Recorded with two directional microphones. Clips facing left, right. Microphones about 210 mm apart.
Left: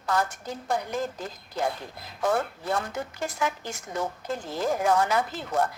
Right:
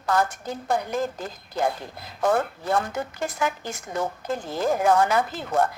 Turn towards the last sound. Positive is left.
turn(degrees=-55)  # may be behind; listen again after turning